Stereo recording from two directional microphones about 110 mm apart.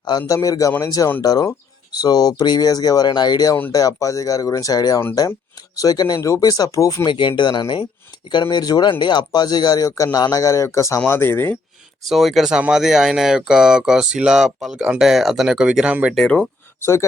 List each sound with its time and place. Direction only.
0.2 s speech: 30° left (ahead or behind)
7.1 s speech: 45° left (ahead or behind); by 11.5 s 20° left (ahead or behind)
12.0 s speech: centre (ahead or behind)
16.1 s speech: 5° left (ahead or behind)
16.8 s speech: 25° left (ahead or behind)